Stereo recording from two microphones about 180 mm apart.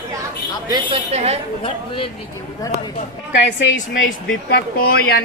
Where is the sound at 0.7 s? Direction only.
25° right (ahead or behind).